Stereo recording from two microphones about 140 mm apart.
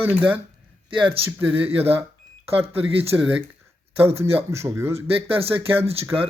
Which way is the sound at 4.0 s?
45° right (ahead or behind).